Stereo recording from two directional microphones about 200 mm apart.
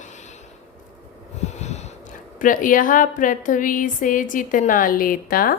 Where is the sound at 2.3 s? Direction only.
40° left (ahead or behind).